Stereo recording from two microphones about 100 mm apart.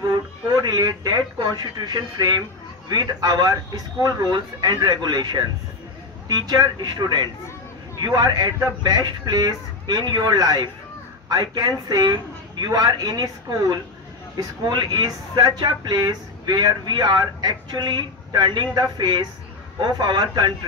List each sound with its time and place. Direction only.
0.5 s speech: 40° right (ahead or behind)